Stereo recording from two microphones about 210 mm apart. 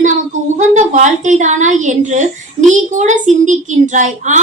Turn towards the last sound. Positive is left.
turn(degrees=-35)  # may be behind; listen again after turning